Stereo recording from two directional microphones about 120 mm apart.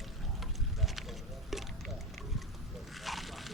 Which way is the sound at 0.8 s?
Centre (ahead or behind).